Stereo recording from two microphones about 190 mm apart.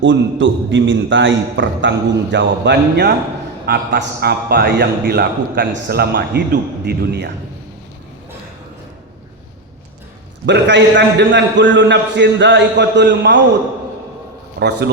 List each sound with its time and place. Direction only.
0.0 s a man's voice: 80° right; by 7.3 s 60° right (ahead or behind)
10.4 s a man's voice: 65° right (ahead or behind)
14.6 s a man's voice: 65° right (ahead or behind)